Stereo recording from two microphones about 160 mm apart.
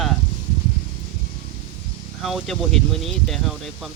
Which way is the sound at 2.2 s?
Centre (ahead or behind).